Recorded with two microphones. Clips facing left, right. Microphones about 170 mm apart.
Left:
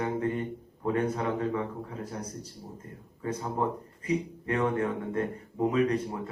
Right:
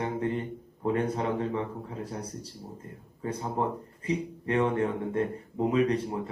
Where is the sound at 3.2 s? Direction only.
30° right (ahead or behind).